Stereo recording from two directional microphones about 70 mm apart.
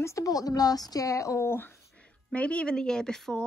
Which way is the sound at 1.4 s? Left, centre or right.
Left.